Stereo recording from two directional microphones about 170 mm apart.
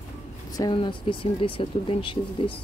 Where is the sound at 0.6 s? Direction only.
25° left (ahead or behind).